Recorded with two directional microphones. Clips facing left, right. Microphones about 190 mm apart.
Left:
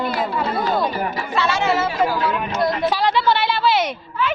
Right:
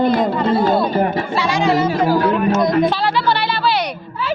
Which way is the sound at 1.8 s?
40° right (ahead or behind).